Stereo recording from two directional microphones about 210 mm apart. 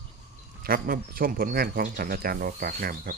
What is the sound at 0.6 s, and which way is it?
Speech, 45° right (ahead or behind).